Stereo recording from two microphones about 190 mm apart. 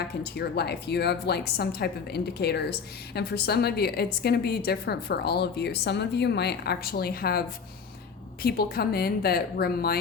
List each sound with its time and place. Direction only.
0.0 s a woman's voice: 60° left (ahead or behind)